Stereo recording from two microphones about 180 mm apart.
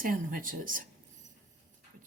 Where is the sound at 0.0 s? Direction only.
50° right (ahead or behind).